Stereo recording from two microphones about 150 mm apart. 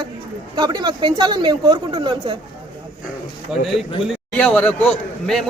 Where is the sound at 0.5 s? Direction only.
30° right (ahead or behind).